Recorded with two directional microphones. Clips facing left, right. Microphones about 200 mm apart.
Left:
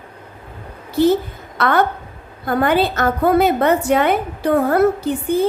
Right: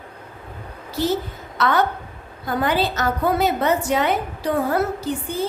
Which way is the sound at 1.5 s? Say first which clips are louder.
Left 3 dB; 55° left (ahead or behind).